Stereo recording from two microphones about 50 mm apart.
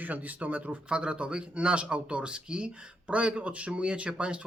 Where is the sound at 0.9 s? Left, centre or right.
Right.